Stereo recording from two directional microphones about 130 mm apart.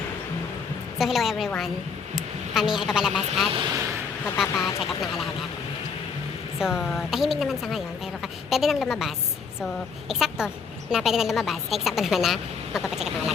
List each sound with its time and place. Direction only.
0.9 s a woman's voice: centre (ahead or behind)
3.5 s speech: 40° right (ahead or behind)
6.6 s a woman's voice: 5° right (ahead or behind)